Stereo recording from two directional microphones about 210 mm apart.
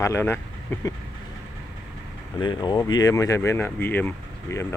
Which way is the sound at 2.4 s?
20° left (ahead or behind).